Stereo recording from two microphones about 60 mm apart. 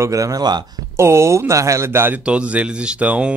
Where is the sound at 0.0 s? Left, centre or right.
Right.